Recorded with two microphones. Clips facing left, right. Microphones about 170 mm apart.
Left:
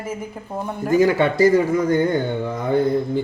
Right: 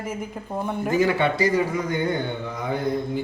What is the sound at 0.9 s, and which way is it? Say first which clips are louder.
A man's voice: left 5 dB; 45° left (ahead or behind).